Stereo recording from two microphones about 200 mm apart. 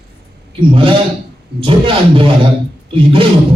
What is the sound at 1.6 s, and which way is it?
A man's voice, 25° right (ahead or behind).